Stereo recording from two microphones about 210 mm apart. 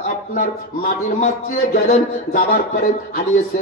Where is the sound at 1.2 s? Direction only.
40° left (ahead or behind).